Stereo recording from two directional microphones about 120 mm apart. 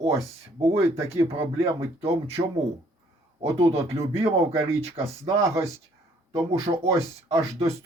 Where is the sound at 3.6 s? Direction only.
55° right (ahead or behind).